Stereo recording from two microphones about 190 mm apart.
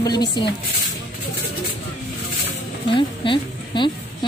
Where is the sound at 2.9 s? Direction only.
25° left (ahead or behind).